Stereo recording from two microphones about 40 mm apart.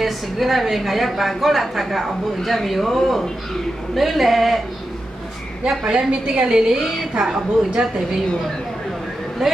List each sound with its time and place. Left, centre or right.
0.0 s a woman's voice: centre
5.7 s a woman's voice: centre
9.4 s a woman's voice: centre